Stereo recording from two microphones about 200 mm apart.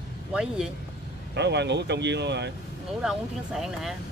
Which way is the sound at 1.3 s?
60° right (ahead or behind).